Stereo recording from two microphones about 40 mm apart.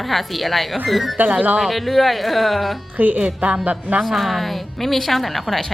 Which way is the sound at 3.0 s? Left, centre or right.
Right.